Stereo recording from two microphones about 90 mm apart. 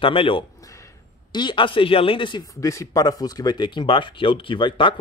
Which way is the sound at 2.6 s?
35° left (ahead or behind).